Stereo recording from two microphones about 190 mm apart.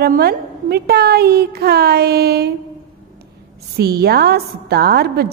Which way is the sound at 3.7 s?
55° right (ahead or behind).